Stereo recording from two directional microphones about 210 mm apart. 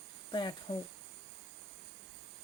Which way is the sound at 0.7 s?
25° left (ahead or behind).